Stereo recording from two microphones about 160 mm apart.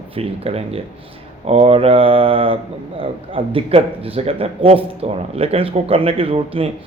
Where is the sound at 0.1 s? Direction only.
35° right (ahead or behind).